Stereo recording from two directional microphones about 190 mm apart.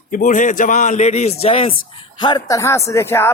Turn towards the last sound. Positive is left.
turn(degrees=10)  # may be behind; listen again after turning